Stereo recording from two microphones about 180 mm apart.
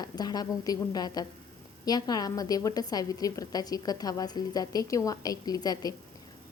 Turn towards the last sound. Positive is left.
turn(degrees=20)  # may be behind; listen again after turning